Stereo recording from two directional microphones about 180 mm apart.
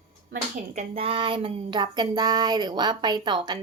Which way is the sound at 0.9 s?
30° right (ahead or behind).